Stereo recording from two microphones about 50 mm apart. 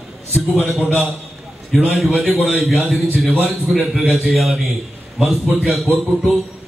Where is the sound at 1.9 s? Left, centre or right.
Centre.